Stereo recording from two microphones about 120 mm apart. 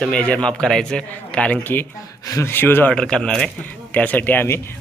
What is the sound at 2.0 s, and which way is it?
Speech, 30° left (ahead or behind).